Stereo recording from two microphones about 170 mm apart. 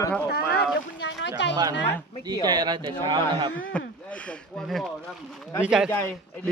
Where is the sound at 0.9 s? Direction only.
90° left.